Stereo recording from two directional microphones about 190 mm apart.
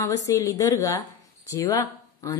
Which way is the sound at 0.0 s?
15° left (ahead or behind).